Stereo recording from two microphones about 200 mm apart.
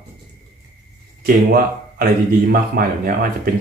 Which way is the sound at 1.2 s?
45° right (ahead or behind).